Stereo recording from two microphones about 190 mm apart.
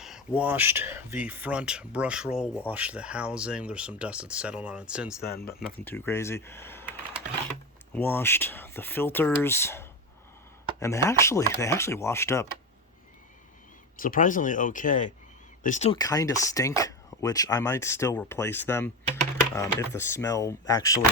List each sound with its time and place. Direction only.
0.0 s speech: 5° right (ahead or behind)
5.2 s speech: 55° left (ahead or behind)
5.7 s speech: 10° left (ahead or behind)
7.9 s speech: 10° left (ahead or behind)
13.9 s speech: 45° left (ahead or behind)
15.9 s speech: 20° left (ahead or behind)